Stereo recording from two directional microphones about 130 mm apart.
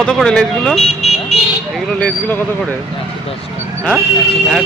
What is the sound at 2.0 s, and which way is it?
Speech, 15° left (ahead or behind).